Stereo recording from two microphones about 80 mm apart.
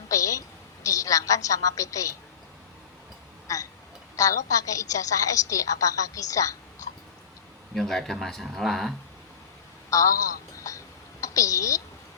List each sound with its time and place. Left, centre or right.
0.1 s a sound: left
0.9 s a woman's voice: left
3.4 s a woman's voice: left
7.8 s speech: centre
9.9 s a woman's voice: left
11.2 s a sound: left